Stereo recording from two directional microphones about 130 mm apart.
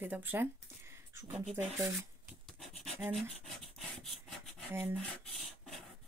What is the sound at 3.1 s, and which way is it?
Rub, centre (ahead or behind).